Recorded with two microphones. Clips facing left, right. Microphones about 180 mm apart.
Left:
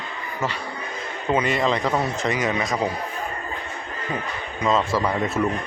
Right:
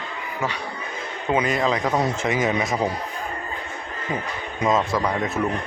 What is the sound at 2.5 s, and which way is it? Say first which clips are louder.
Speech: right 1 dB; 15° right (ahead or behind).